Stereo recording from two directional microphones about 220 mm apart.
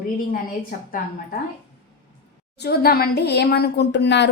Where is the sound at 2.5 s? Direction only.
45° left (ahead or behind).